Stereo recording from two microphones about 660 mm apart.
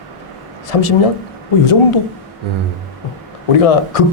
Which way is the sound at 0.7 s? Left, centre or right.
Left.